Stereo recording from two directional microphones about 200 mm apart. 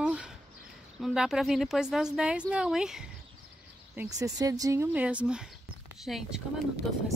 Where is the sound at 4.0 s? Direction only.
15° right (ahead or behind); by 6.4 s centre (ahead or behind).